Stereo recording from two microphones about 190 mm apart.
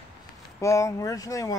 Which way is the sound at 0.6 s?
15° left (ahead or behind).